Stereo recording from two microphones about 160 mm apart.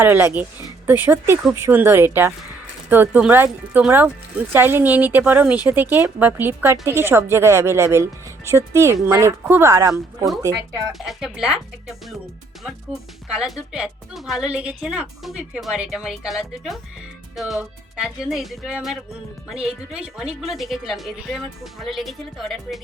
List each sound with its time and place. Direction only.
0.0 s a woman's voice: 15° right (ahead or behind)
10.9 s a woman's voice: centre (ahead or behind)
13.2 s a woman's voice: 5° right (ahead or behind)